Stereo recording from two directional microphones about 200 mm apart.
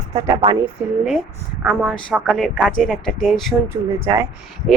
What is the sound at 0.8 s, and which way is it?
Speech, 5° right (ahead or behind).